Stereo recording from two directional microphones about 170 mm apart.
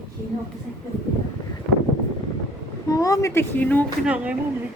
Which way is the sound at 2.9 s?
20° left (ahead or behind).